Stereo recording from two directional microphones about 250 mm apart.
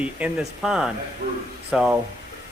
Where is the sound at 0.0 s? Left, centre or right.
Centre.